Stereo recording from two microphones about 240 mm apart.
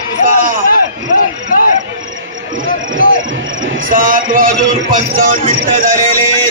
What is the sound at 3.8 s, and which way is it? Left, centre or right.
Speech, right.